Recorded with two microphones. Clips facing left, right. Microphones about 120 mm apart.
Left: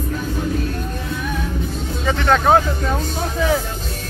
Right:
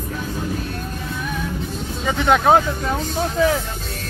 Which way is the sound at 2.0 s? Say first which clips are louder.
Even; 15° right (ahead or behind).